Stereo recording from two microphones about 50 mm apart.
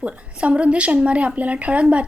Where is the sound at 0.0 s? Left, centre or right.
Right.